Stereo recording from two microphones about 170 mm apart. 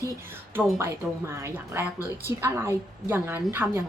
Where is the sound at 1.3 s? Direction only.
15° right (ahead or behind).